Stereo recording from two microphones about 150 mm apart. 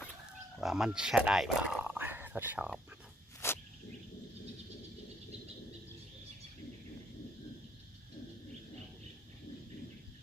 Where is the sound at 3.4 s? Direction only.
15° left (ahead or behind).